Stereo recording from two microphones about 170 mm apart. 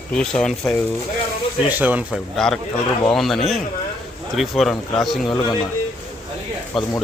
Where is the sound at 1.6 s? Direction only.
10° right (ahead or behind).